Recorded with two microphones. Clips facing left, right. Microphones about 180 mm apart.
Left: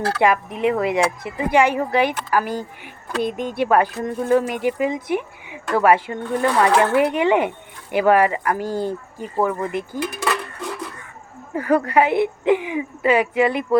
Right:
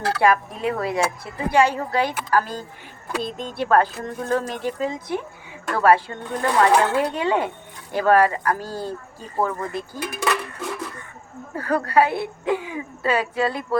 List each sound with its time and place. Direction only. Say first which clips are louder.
0.2 s speech: left 1 dB; 20° left (ahead or behind)
10.2 s a sound: even; centre (ahead or behind)
11.5 s speech: left 2 dB; 20° left (ahead or behind)